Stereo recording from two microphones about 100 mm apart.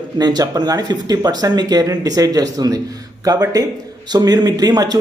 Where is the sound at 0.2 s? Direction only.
45° right (ahead or behind).